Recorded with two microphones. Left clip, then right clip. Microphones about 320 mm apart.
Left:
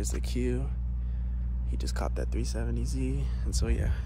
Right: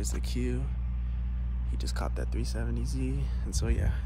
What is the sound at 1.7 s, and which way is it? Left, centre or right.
Speech, centre.